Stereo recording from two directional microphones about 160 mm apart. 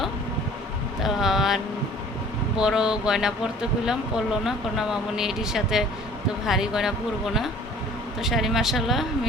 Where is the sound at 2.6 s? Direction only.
5° right (ahead or behind).